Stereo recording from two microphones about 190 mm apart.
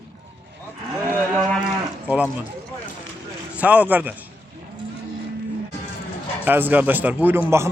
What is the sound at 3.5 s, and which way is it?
Speech, 10° right (ahead or behind).